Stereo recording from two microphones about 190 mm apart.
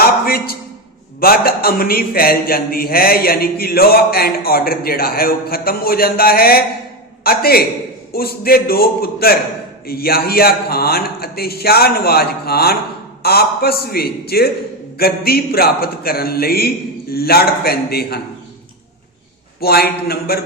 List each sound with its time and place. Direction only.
0.0 s a sound: 55° left (ahead or behind)
1.2 s a man's voice: 50° left (ahead or behind)
19.5 s speech: 55° left (ahead or behind)